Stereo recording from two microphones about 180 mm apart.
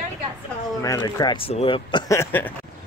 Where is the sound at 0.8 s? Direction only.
20° left (ahead or behind).